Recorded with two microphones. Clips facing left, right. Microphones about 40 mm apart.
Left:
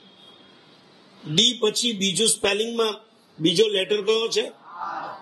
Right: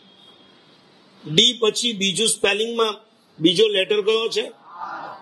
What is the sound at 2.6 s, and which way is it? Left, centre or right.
Speech, centre.